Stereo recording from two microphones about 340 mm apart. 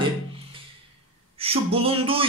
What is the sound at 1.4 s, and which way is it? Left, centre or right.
Speech, centre.